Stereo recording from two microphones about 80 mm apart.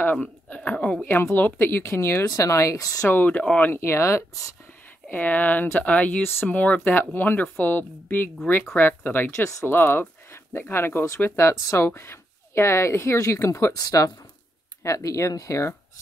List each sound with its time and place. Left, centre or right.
0.0 s speech: left
1.0 s speech: left
3.1 s speech: left
5.1 s speech: left
13.7 s speech: left
14.8 s speech: left